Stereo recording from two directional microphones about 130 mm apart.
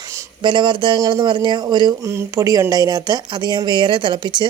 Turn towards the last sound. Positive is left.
turn(degrees=-40)  # may be behind; listen again after turning